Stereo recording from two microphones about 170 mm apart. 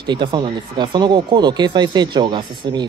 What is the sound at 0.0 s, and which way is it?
Speech, 25° right (ahead or behind).